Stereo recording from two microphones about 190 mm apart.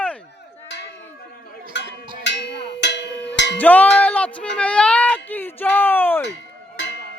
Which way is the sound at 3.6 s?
10° left (ahead or behind).